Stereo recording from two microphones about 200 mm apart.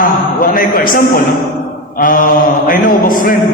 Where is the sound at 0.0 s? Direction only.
45° left (ahead or behind).